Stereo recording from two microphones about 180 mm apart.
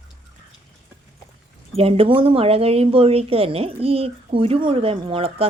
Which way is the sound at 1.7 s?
30° right (ahead or behind).